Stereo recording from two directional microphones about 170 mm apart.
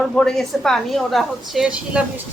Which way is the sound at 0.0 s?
5° left (ahead or behind).